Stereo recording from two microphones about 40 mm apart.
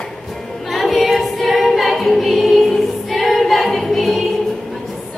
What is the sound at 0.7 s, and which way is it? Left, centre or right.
Choir, centre.